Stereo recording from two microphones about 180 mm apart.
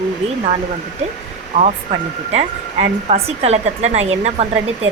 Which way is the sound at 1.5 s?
45° right (ahead or behind).